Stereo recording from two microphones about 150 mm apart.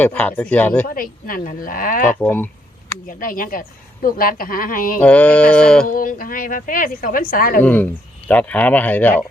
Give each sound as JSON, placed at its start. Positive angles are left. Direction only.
{"t": 0.0, "sound": "speech", "side_deg": 10}
{"t": 0.9, "sound": "a woman's voice", "side_deg": 70}
{"t": 2.1, "sound": "speech", "side_deg": 10}
{"t": 3.1, "sound": "a woman's voice", "side_deg": 70}
{"t": 4.9, "sound": "speech", "side_deg": 10}
{"t": 5.8, "sound": "a woman's voice", "side_deg": 70}
{"t": 7.6, "sound": "speech", "side_deg": 10}